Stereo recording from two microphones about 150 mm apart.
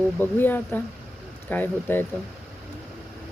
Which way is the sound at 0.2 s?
15° left (ahead or behind).